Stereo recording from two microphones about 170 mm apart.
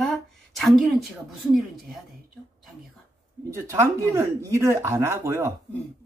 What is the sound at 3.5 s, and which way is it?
Speech, 15° right (ahead or behind).